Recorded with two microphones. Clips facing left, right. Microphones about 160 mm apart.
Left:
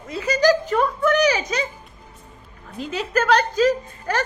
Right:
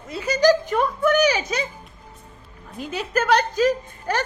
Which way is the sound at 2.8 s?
10° right (ahead or behind).